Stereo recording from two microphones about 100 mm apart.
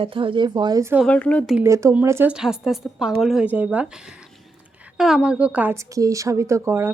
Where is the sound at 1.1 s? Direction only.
15° left (ahead or behind).